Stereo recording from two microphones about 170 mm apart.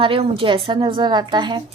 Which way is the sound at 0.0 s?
30° right (ahead or behind).